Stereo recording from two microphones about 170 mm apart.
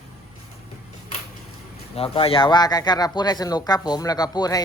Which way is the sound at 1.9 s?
35° left (ahead or behind).